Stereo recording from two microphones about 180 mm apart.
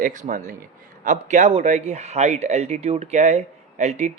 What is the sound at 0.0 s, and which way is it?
Speech, 45° right (ahead or behind).